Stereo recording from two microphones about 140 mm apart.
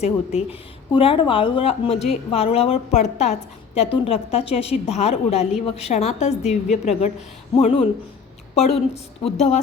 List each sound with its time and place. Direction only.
0.0 s a woman's voice: 50° left (ahead or behind)
0.9 s a woman's voice: 40° left (ahead or behind); by 3.3 s 55° left (ahead or behind)
3.8 s a woman's voice: 40° left (ahead or behind)